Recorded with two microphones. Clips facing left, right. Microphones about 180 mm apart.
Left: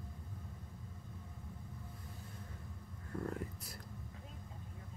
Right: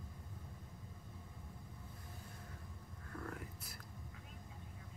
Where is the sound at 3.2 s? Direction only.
30° left (ahead or behind).